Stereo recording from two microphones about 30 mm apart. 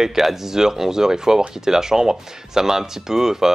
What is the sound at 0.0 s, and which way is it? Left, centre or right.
Speech, centre.